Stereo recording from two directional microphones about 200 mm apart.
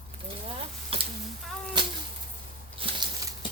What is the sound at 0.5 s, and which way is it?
Speech, 25° right (ahead or behind).